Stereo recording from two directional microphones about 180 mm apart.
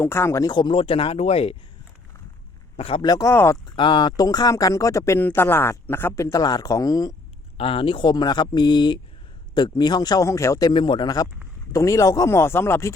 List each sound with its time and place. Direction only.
0.0 s speech: 15° left (ahead or behind); by 1.5 s 35° left (ahead or behind)
2.7 s speech: 30° left (ahead or behind); by 3.6 s 15° left (ahead or behind)
3.8 s speech: 25° left (ahead or behind)